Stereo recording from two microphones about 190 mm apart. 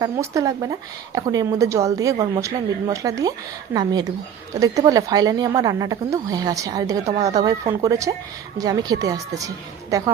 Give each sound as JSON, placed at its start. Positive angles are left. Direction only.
{"t": 0.0, "sound": "a woman's voice", "side_deg": -15}
{"t": 4.6, "sound": "a woman's voice", "side_deg": -20}